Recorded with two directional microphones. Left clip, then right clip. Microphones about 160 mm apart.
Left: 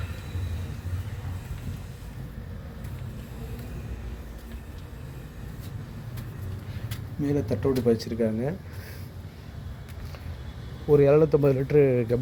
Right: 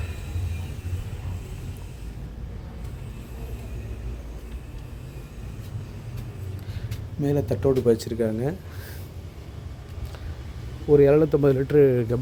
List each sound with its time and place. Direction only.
7.3 s speech: 25° right (ahead or behind)
10.8 s speech: 20° right (ahead or behind)